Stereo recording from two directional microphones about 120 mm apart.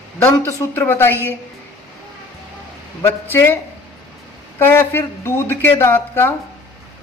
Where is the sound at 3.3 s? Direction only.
15° left (ahead or behind).